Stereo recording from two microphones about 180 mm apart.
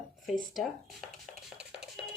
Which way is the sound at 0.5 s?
Centre (ahead or behind).